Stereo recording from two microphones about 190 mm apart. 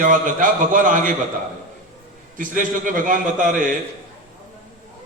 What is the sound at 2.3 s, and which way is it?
A man's voice, 45° right (ahead or behind).